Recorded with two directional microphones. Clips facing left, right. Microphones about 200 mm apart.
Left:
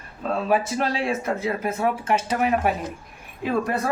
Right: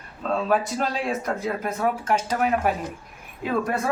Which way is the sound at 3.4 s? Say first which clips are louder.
Left 1 dB; centre (ahead or behind).